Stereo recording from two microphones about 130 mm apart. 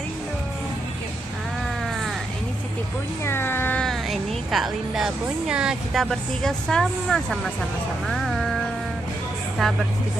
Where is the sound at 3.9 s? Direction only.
Centre (ahead or behind).